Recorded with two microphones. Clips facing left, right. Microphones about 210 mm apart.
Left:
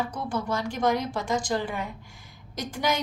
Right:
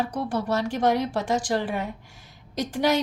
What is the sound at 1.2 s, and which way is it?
Speech, 90° right.